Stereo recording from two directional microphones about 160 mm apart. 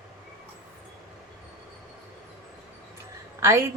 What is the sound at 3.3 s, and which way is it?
Speech, 15° right (ahead or behind).